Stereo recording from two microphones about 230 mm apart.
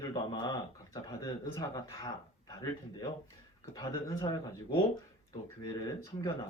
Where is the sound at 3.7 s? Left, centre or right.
Centre.